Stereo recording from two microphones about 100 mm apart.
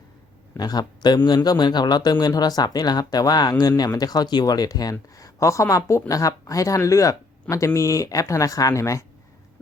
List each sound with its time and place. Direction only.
0.5 s a man's voice: 45° left (ahead or behind)